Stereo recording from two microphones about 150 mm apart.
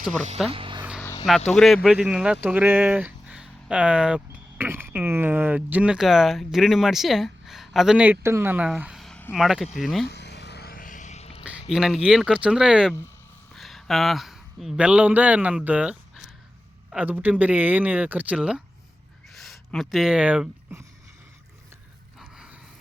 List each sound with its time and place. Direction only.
0.4 s speech: 35° right (ahead or behind)
0.8 s vehicle: 5° right (ahead or behind)
1.5 s speech: centre (ahead or behind)
10.1 s a sound: 90° left; by 11.4 s 45° left (ahead or behind)
11.7 s a man's voice: 5° right (ahead or behind)